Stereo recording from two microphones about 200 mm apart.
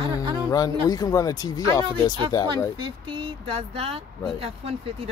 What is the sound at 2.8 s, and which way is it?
Speech, 25° right (ahead or behind).